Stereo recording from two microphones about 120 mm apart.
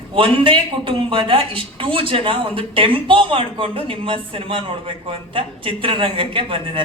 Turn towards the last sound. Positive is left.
turn(degrees=-50)  # may be behind; listen again after turning